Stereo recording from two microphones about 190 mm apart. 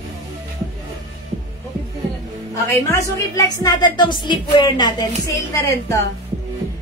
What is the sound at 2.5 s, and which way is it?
A woman's voice, 15° left (ahead or behind).